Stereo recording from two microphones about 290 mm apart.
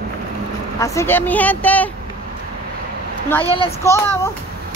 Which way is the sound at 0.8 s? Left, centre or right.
Centre.